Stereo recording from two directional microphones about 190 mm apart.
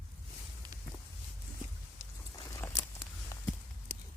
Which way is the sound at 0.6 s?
20° right (ahead or behind).